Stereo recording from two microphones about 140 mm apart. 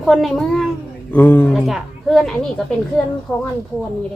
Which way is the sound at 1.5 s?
Centre (ahead or behind).